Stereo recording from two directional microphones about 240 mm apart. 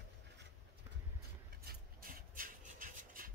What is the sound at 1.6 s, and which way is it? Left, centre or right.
Rub, right.